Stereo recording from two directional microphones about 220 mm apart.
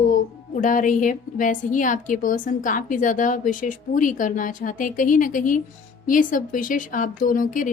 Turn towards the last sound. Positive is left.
turn(degrees=35)  # may be behind; listen again after turning